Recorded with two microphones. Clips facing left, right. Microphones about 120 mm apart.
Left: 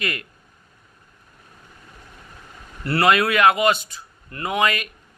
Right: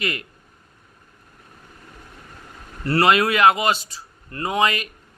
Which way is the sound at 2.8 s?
30° right (ahead or behind).